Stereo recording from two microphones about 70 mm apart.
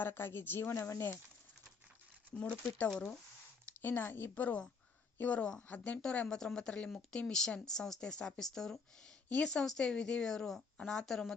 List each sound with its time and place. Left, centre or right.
0.0 s speech: left
0.7 s speech: left
2.6 s speech: left
2.9 s a woman's voice: centre
3.7 s speech: left
6.0 s a woman's voice: centre